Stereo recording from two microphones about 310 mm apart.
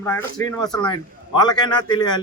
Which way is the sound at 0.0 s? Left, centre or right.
Centre.